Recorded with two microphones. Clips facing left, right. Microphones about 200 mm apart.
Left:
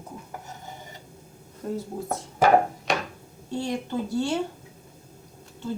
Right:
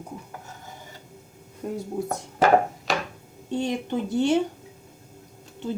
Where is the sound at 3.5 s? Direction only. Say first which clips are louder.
Right 2 dB; 20° right (ahead or behind).